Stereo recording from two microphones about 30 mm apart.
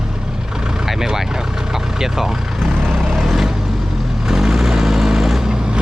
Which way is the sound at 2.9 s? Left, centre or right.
Centre.